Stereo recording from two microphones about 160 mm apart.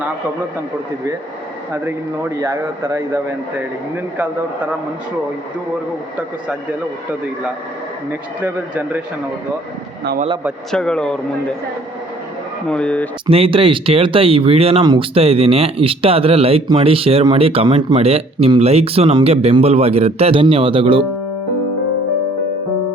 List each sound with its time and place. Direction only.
1.7 s a man's voice: 15° right (ahead or behind)
8.4 s a man's voice: 10° right (ahead or behind)
10.7 s a man's voice: 5° left (ahead or behind)
12.6 s speech: 5° left (ahead or behind)
13.3 s speech: 35° right (ahead or behind)